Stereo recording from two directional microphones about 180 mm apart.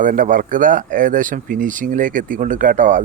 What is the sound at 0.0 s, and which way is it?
Speech, 45° right (ahead or behind).